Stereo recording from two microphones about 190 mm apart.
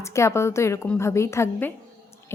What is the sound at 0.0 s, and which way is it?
Speech, 15° left (ahead or behind).